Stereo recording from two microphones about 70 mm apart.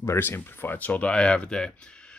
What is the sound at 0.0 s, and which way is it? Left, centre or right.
Speech, left.